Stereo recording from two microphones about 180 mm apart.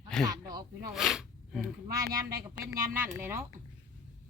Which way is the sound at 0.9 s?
Centre (ahead or behind).